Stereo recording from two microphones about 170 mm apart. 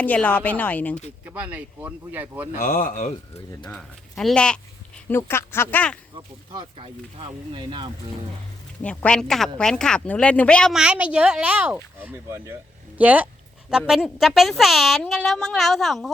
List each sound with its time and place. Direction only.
0.0 s speech: 10° left (ahead or behind)
1.2 s speech: 10° right (ahead or behind)
2.6 s speech: 50° left (ahead or behind)
4.2 s speech: 5° left (ahead or behind)
6.1 s speech: 25° right (ahead or behind)
8.8 s speech: 5° left (ahead or behind)